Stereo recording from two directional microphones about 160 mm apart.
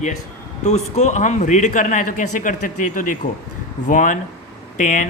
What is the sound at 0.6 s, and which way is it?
A man's voice, 45° left (ahead or behind).